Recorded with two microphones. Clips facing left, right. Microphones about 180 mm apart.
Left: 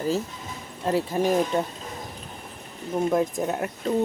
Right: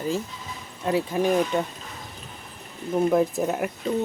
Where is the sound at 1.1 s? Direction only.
35° left (ahead or behind).